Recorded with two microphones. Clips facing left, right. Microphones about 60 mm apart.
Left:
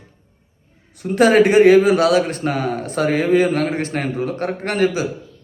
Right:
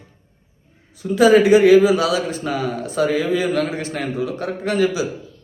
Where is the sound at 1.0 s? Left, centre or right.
Left.